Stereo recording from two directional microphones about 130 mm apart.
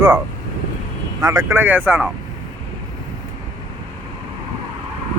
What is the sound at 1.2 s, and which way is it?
Speech, 25° right (ahead or behind).